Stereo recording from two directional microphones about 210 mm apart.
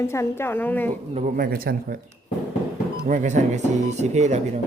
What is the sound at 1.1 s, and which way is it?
Speech, 40° right (ahead or behind).